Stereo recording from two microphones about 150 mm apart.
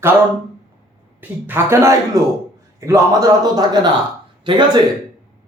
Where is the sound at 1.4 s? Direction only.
15° right (ahead or behind).